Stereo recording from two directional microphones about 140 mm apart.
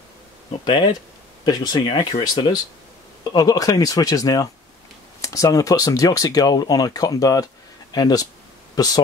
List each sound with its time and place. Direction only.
1.4 s speech: 30° left (ahead or behind)